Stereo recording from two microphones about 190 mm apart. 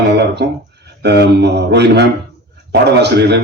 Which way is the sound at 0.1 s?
60° right (ahead or behind).